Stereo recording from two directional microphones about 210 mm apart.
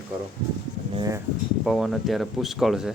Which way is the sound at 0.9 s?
15° right (ahead or behind).